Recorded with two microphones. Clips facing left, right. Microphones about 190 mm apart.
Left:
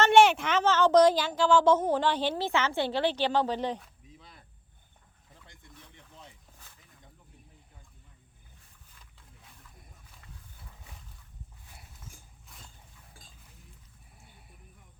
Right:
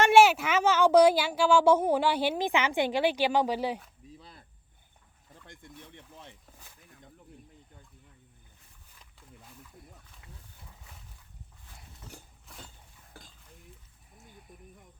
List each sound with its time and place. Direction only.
0.0 s speech: 5° right (ahead or behind)
4.2 s cricket: 30° right (ahead or behind)
12.0 s cutlery: 65° right (ahead or behind)